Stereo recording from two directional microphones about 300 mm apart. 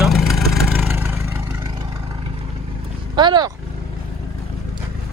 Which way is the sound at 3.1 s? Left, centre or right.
Centre.